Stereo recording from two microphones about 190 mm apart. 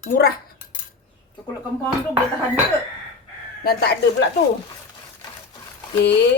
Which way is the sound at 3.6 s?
55° left (ahead or behind).